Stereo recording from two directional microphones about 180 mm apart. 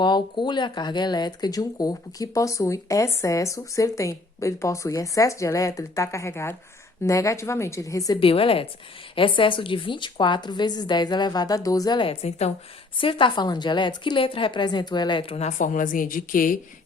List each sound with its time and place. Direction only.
0.0 s a woman's voice: 25° left (ahead or behind); by 16.6 s 50° left (ahead or behind)